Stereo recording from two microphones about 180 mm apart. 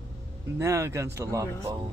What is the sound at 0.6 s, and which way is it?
Speech, 15° right (ahead or behind).